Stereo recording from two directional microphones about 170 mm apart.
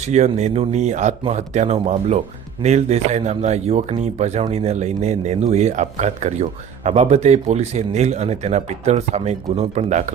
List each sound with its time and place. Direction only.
0.0 s speech: 40° right (ahead or behind)